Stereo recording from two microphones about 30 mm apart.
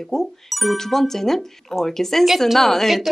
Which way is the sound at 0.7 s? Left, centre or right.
Centre.